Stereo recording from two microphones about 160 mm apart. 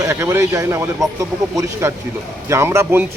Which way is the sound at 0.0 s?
15° right (ahead or behind).